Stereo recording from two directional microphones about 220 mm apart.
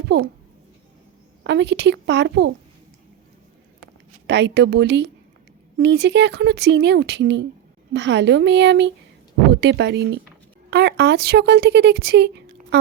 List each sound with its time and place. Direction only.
1.5 s speech: 50° right (ahead or behind)
4.3 s speech: 50° right (ahead or behind)